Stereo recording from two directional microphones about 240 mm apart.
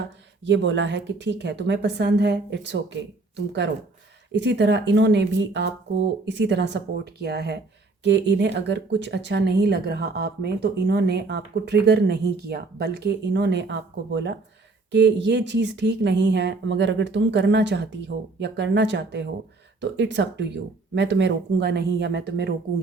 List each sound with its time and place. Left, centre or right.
0.4 s speech: right